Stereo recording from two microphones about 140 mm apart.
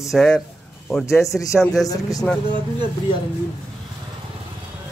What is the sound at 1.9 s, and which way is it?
Speech, 25° left (ahead or behind).